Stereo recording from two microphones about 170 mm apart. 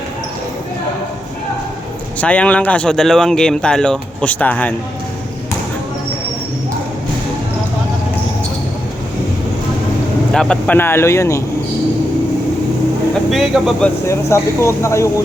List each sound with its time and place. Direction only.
2.2 s speech: 5° left (ahead or behind)
10.3 s speech: 5° left (ahead or behind)
13.3 s speech: centre (ahead or behind)
14.1 s speech: 15° left (ahead or behind)